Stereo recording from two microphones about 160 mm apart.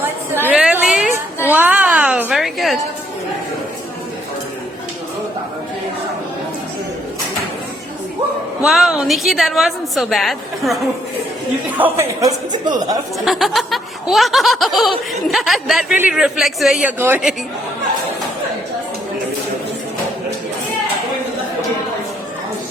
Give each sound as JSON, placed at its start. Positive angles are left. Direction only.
{"t": 0.4, "sound": "a sound", "side_deg": -10}
{"t": 8.6, "sound": "snicker", "side_deg": 0}
{"t": 11.8, "sound": "speech", "side_deg": -20}
{"t": 13.1, "sound": "snicker", "side_deg": 0}
{"t": 17.0, "sound": "a woman's voice", "side_deg": -10}